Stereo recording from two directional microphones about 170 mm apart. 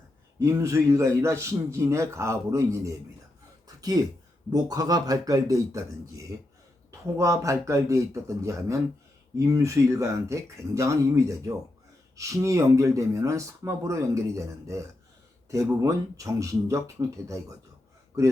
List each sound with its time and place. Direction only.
0.3 s a man's voice: 15° right (ahead or behind)
3.8 s a man's voice: 20° right (ahead or behind)